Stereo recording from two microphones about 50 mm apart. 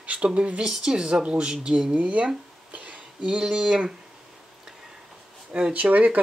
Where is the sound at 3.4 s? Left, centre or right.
Centre.